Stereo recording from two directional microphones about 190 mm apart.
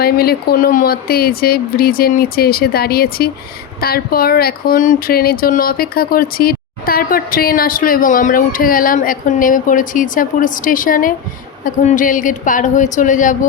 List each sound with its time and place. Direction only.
0.0 s speech: 55° left (ahead or behind)